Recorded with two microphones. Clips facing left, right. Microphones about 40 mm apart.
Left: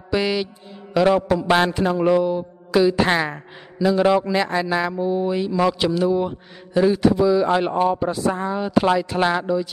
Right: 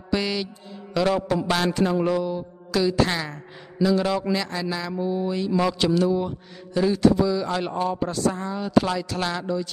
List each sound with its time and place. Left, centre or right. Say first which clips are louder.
0.1 s speech: left 4 dB; centre
2.0 s mantra: left 6 dB; centre
3.1 s speech: left 7 dB; left
4.9 s speech: left 4 dB; centre